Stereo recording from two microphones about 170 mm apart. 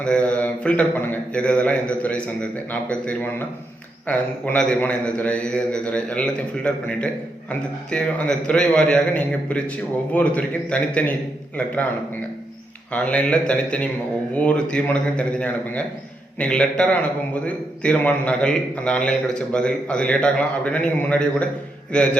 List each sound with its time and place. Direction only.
0.0 s a man's voice: 5° left (ahead or behind)
12.9 s a man's voice: 10° left (ahead or behind)